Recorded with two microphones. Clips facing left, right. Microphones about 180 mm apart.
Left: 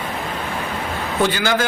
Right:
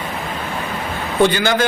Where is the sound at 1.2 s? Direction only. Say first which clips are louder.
Right 4 dB; 5° left (ahead or behind).